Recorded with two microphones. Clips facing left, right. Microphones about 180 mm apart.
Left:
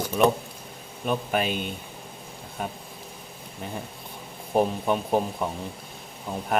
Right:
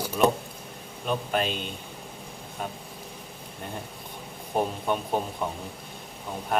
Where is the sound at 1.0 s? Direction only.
5° left (ahead or behind).